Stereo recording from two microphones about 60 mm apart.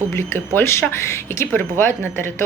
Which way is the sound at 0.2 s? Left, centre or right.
Left.